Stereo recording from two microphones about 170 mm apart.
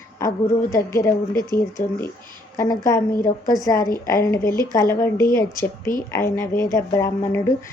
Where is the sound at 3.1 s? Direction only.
55° left (ahead or behind).